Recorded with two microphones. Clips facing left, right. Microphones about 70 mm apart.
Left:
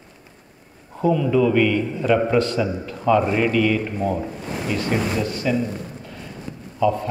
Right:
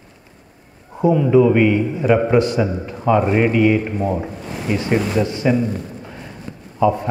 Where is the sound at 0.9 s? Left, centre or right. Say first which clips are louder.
Right 5 dB; right.